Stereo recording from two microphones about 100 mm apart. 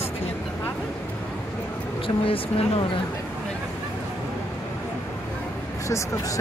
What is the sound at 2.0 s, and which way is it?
Speech, 65° left (ahead or behind).